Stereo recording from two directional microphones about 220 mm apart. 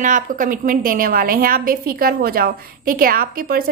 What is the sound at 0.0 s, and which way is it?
A woman's voice, 35° right (ahead or behind).